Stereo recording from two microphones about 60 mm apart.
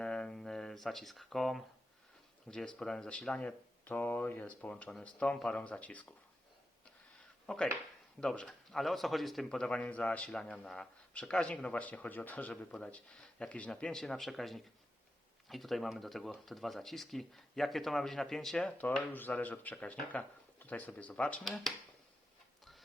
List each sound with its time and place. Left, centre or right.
0.0 s a sound: centre
2.5 s speech: centre
7.4 s speech: centre
9.6 s speech: centre
13.7 s speech: centre
18.8 s speech: left
21.4 s speech: centre